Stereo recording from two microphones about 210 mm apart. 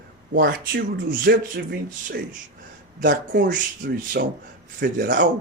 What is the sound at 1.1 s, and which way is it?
Speech, 45° right (ahead or behind).